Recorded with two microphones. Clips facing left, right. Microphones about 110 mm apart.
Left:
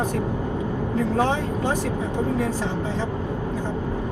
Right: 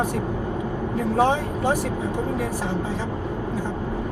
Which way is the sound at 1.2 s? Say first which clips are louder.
Right 5 dB; 15° right (ahead or behind).